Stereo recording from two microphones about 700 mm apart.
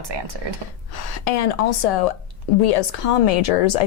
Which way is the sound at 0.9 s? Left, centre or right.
Left.